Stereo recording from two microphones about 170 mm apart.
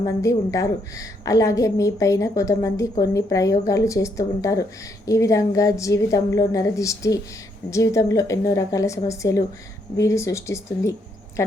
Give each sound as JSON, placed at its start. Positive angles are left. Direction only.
{"t": 0.0, "sound": "a woman's voice", "side_deg": 20}